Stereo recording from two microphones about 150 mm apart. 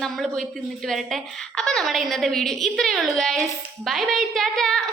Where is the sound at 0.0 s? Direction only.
Centre (ahead or behind).